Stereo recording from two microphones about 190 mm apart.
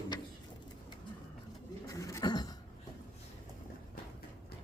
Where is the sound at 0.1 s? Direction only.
20° left (ahead or behind).